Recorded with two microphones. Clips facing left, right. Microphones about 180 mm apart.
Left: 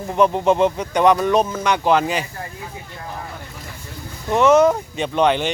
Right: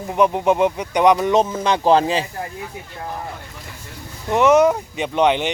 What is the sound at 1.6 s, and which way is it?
Speech, 30° right (ahead or behind).